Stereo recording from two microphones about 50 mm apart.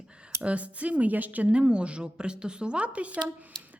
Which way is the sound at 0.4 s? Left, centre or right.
Right.